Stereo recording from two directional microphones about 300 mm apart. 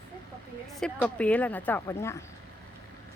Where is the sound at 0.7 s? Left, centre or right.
Centre.